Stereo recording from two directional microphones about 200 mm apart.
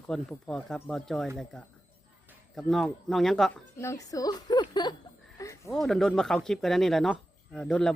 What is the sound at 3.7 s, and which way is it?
A woman's voice, 15° left (ahead or behind).